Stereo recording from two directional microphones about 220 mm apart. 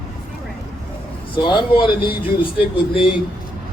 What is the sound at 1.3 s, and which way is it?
Speech, 20° left (ahead or behind).